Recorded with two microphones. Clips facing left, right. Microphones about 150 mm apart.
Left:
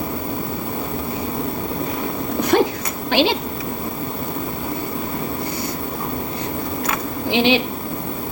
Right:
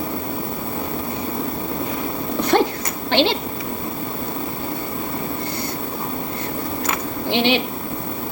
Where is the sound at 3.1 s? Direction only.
10° left (ahead or behind).